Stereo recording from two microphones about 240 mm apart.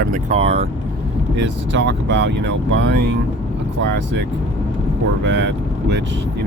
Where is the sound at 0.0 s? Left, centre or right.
Right.